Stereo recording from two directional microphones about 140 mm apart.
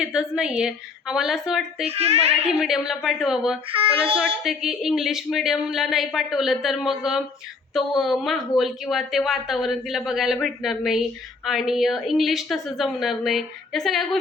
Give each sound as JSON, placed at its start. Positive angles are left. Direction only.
{"t": 0.0, "sound": "a woman's voice", "side_deg": -5}
{"t": 1.8, "sound": "speech", "side_deg": -45}
{"t": 2.5, "sound": "a woman's voice", "side_deg": 0}
{"t": 3.7, "sound": "child singing", "side_deg": -40}
{"t": 4.4, "sound": "a woman's voice", "side_deg": -5}